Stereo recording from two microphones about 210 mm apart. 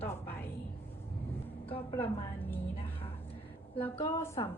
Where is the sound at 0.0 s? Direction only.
10° left (ahead or behind).